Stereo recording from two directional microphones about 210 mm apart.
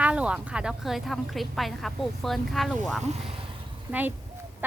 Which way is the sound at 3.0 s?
30° right (ahead or behind).